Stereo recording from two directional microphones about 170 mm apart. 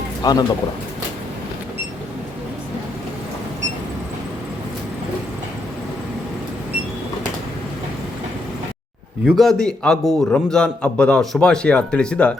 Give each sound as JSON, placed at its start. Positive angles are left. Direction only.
{"t": 0.2, "sound": "speech", "side_deg": 25}
{"t": 9.2, "sound": "a man's voice", "side_deg": 0}